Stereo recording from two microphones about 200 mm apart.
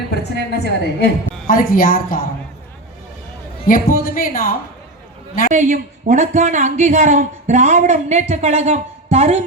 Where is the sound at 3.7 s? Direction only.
45° left (ahead or behind).